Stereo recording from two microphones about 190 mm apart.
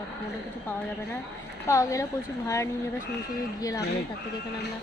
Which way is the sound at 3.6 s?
20° left (ahead or behind).